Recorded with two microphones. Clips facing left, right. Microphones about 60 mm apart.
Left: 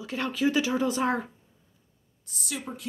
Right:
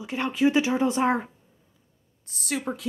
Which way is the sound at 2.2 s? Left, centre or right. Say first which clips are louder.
Right 6 dB; right.